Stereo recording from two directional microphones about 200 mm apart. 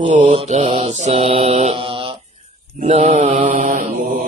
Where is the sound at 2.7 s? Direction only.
35° right (ahead or behind).